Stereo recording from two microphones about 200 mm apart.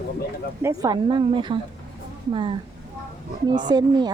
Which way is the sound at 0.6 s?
15° right (ahead or behind).